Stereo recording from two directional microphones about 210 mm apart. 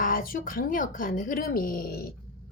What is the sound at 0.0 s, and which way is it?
Speech, 40° left (ahead or behind).